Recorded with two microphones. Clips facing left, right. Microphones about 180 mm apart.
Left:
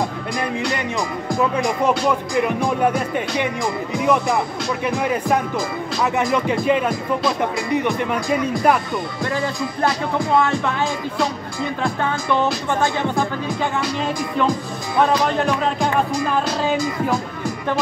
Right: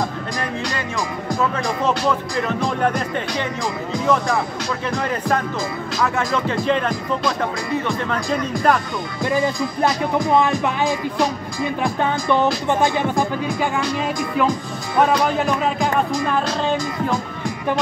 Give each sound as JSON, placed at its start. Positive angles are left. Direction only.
{"t": 1.4, "sound": "speech", "side_deg": 10}
{"t": 9.2, "sound": "speech", "side_deg": -15}
{"t": 11.8, "sound": "speech", "side_deg": -15}
{"t": 15.2, "sound": "speech", "side_deg": -5}